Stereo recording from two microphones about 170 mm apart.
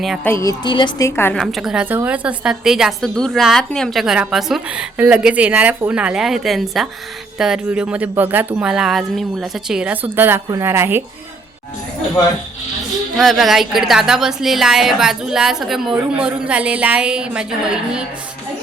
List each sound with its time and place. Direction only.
0.3 s a woman's voice: 15° left (ahead or behind)
0.6 s a woman's voice: 30° left (ahead or behind)
1.0 s a woman's voice: 15° left (ahead or behind)
1.4 s a woman's voice: centre (ahead or behind)
13.1 s a woman's voice: centre (ahead or behind)